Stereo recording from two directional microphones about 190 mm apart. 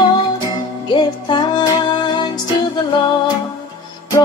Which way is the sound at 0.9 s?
25° left (ahead or behind).